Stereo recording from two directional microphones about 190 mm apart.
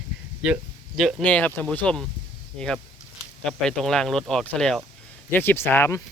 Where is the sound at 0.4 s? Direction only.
5° right (ahead or behind).